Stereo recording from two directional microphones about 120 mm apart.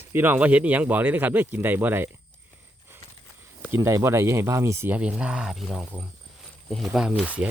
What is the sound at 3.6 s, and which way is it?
Speech, 20° right (ahead or behind).